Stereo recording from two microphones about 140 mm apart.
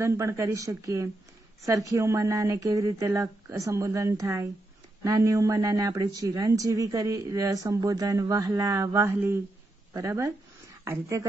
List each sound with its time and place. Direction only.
0.0 s speech: 20° right (ahead or behind)